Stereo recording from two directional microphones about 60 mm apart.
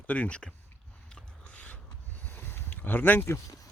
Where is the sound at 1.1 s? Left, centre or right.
Left.